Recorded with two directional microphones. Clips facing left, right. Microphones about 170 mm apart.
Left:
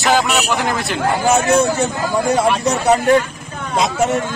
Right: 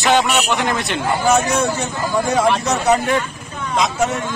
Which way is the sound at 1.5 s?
30° left (ahead or behind).